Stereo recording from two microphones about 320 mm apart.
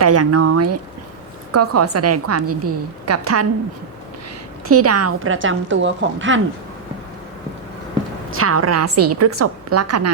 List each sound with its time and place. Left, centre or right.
0.0 s a woman's voice: right
4.7 s a woman's voice: right
8.3 s a woman's voice: right